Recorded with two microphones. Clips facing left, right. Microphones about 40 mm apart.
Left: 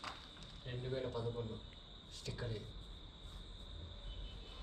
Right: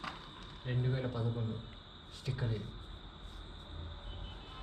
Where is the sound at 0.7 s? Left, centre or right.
Right.